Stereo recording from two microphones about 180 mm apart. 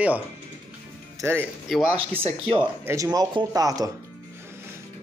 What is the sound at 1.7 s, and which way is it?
Speech, 5° right (ahead or behind).